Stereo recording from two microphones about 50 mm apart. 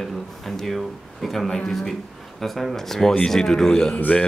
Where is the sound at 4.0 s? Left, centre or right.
Left.